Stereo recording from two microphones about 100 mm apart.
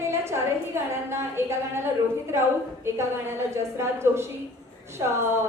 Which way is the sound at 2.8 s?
25° right (ahead or behind).